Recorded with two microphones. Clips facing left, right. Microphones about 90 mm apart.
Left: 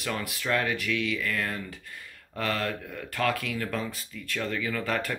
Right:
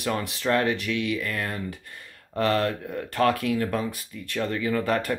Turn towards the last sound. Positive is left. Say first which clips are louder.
# right 5 dB
turn(degrees=-30)  # may be behind; listen again after turning